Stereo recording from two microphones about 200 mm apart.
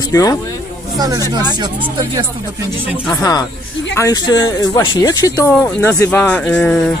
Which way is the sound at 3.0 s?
15° left (ahead or behind).